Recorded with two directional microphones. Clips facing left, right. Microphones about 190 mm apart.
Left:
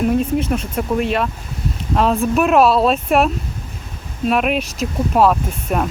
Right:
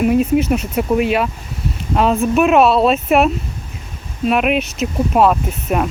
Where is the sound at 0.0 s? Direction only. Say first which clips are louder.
Right 3 dB; 5° right (ahead or behind).